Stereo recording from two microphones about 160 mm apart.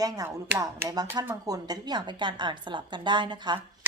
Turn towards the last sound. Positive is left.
turn(degrees=-30)  # may be behind; listen again after turning